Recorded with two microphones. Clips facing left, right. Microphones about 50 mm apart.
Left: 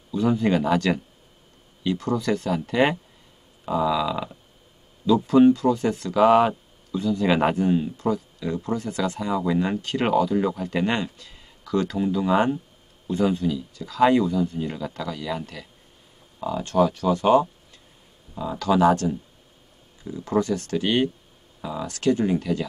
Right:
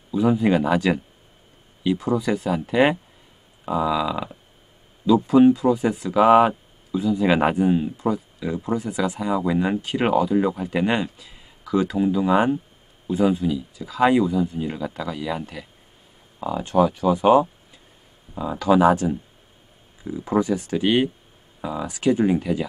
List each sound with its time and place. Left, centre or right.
0.1 s speech: centre